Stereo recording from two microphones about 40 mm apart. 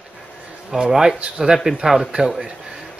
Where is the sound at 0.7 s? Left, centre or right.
Centre.